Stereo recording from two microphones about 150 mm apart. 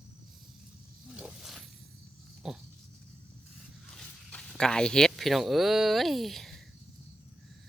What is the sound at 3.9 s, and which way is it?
Speech, 5° left (ahead or behind).